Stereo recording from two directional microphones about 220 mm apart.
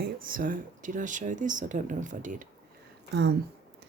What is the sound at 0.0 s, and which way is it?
Speech, 40° right (ahead or behind).